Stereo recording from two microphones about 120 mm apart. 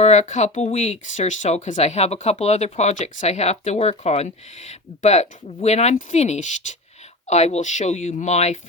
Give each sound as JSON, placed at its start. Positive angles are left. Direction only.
{"t": 0.0, "sound": "speech", "side_deg": 75}